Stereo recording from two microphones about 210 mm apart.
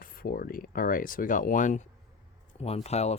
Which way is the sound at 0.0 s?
45° left (ahead or behind).